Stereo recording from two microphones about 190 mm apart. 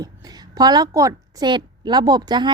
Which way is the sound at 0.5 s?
20° right (ahead or behind).